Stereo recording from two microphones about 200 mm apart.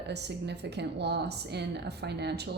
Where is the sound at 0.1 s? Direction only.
60° right (ahead or behind).